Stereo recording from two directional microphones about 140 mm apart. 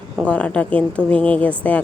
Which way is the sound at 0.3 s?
10° left (ahead or behind).